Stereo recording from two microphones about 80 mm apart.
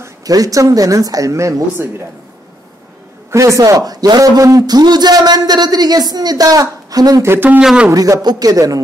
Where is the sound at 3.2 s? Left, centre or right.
Right.